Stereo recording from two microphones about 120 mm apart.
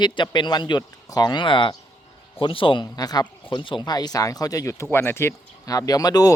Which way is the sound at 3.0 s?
35° left (ahead or behind).